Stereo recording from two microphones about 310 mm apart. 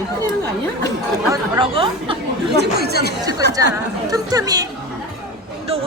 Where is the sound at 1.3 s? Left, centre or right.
Centre.